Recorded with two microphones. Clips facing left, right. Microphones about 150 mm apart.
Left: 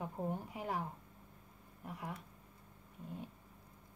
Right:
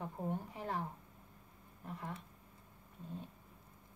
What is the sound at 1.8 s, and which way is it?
Speech, 10° left (ahead or behind).